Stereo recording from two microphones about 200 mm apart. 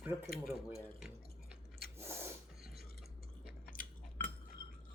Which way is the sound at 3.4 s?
45° left (ahead or behind).